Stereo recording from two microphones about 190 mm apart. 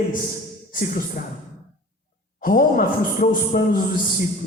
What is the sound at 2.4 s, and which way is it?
A man's voice, 50° left (ahead or behind).